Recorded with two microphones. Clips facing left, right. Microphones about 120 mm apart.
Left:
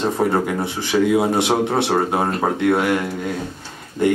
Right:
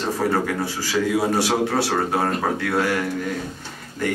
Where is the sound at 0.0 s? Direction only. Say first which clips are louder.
Left 3 dB; 25° left (ahead or behind).